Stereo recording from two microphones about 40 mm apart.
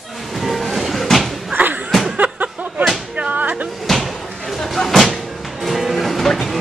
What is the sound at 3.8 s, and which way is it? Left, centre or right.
Slam, centre.